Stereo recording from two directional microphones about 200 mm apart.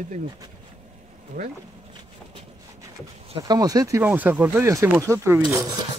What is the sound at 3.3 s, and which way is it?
Speech, 20° right (ahead or behind).